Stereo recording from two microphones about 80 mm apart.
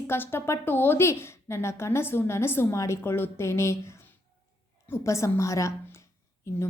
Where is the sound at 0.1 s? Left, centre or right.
Left.